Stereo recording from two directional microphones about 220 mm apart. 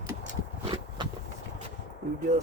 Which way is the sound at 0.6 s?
25° right (ahead or behind).